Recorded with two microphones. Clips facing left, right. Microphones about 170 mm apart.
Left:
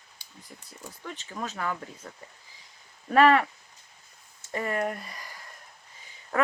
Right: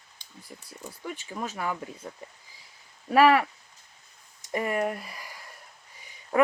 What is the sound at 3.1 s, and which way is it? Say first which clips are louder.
Speech: even; 5° right (ahead or behind).